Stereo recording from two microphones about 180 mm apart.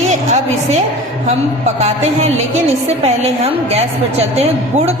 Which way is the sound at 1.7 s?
40° right (ahead or behind).